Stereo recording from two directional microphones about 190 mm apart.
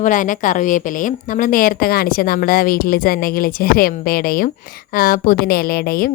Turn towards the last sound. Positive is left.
turn(degrees=55)  # may be behind; listen again after turning